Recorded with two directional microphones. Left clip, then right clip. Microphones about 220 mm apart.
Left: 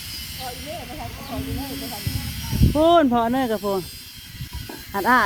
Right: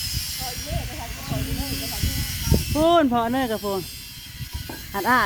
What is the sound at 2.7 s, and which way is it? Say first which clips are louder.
Speech: left 2 dB; 5° left (ahead or behind).